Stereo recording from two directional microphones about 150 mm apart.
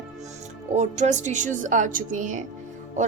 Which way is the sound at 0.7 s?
50° right (ahead or behind).